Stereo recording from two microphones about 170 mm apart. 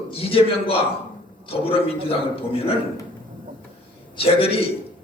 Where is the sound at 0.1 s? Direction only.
35° left (ahead or behind).